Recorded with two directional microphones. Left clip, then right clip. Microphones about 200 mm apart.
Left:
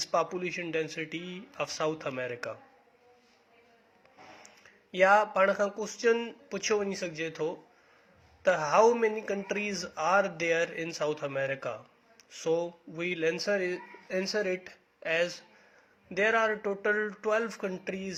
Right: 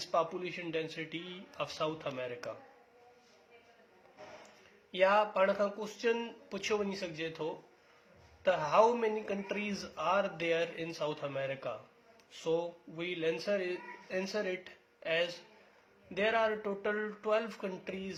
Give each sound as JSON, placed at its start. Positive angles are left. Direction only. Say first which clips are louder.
{"t": 0.0, "sound": "speech", "louder": "left 4 dB", "side_deg": 30}
{"t": 4.4, "sound": "speech", "louder": "left 3 dB", "side_deg": 30}